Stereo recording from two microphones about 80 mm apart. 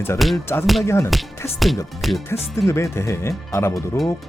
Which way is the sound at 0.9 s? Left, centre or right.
Left.